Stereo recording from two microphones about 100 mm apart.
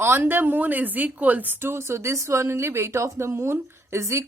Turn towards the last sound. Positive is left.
turn(degrees=-30)  # may be behind; listen again after turning